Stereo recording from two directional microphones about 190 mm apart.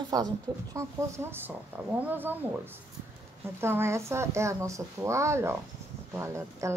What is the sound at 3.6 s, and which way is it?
Speech, 15° right (ahead or behind).